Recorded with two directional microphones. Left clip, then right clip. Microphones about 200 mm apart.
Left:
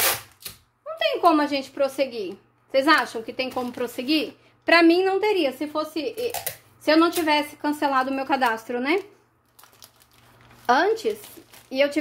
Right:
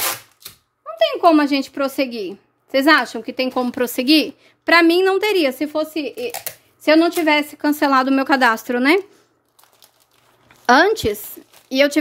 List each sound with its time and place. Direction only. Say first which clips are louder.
0.9 s a woman's voice: right 5 dB; 55° right (ahead or behind)
4.6 s a woman's voice: right 4 dB; 30° right (ahead or behind); by 9.0 s 55° right (ahead or behind)
10.6 s a woman's voice: right 7 dB; 60° right (ahead or behind)